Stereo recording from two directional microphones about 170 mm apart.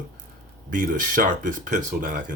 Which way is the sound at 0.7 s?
50° right (ahead or behind).